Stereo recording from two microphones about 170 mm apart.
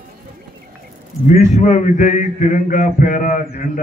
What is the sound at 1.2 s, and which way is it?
A man's voice, 45° left (ahead or behind).